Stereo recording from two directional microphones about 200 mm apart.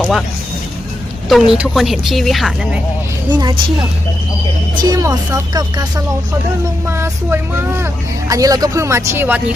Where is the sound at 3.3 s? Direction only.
20° right (ahead or behind).